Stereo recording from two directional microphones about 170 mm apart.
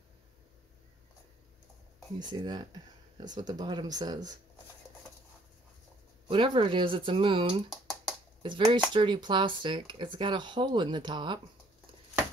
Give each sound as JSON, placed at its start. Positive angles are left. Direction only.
{"t": 2.1, "sound": "speech", "side_deg": -25}
{"t": 6.2, "sound": "speech", "side_deg": -30}